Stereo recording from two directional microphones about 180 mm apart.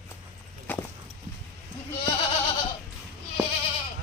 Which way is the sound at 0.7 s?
10° left (ahead or behind).